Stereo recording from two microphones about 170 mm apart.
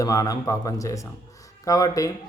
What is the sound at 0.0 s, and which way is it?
A man's voice, 20° left (ahead or behind).